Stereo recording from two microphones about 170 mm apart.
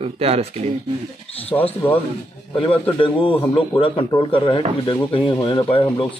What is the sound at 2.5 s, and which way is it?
Speech, 30° left (ahead or behind).